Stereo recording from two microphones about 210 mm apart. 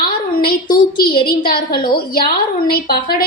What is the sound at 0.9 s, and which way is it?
A woman's voice, 45° left (ahead or behind).